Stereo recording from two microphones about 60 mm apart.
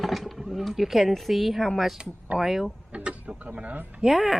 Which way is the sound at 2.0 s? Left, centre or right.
Centre.